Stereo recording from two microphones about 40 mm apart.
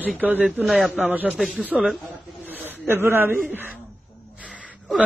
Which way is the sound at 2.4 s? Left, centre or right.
Right.